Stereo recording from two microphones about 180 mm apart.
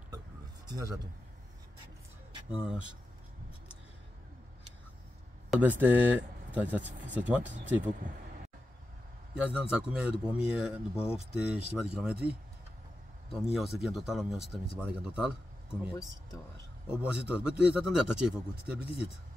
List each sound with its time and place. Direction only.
0.7 s speech: 20° right (ahead or behind)
2.5 s a man's voice: 5° right (ahead or behind)
5.5 s speech: 10° right (ahead or behind)
9.3 s a man's voice: 5° right (ahead or behind)
13.3 s a man's voice: centre (ahead or behind)
16.9 s a man's voice: 5° right (ahead or behind)